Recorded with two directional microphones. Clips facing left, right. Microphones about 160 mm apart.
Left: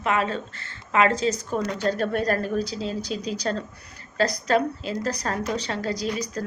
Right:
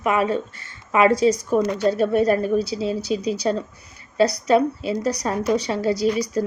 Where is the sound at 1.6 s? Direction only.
10° right (ahead or behind).